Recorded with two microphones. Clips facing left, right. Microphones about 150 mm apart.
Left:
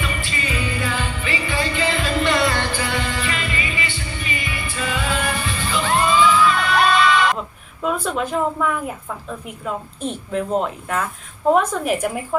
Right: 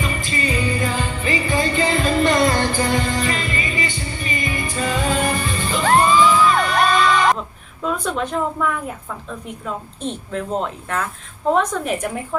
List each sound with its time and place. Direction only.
0.0 s music: 40° right (ahead or behind)
7.3 s a sound: 5° left (ahead or behind)
9.6 s a woman's voice: 5° left (ahead or behind)